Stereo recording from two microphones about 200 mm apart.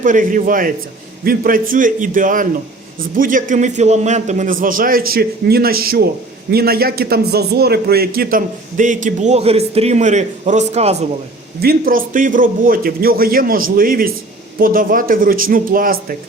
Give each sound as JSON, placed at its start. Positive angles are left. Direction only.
{"t": 0.0, "sound": "a man's voice", "side_deg": -40}
{"t": 11.6, "sound": "a man's voice", "side_deg": -45}